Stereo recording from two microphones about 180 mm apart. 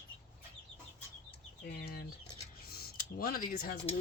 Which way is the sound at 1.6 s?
55° left (ahead or behind).